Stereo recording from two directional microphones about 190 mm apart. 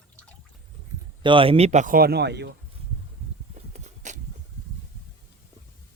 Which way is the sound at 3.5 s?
35° right (ahead or behind).